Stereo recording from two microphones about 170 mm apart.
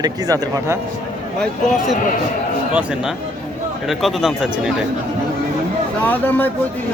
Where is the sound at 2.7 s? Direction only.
5° right (ahead or behind).